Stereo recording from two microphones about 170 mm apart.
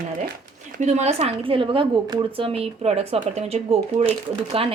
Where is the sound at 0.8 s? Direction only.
45° right (ahead or behind).